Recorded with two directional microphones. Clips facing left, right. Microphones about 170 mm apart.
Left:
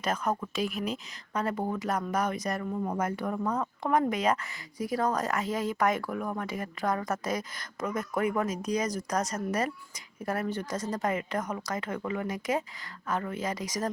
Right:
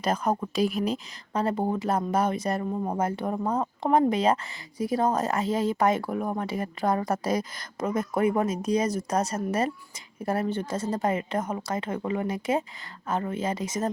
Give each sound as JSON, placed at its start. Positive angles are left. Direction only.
{"t": 0.0, "sound": "speech", "side_deg": -35}